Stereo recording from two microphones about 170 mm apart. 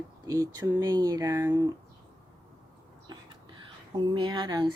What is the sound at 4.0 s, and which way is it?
Speech, 25° right (ahead or behind).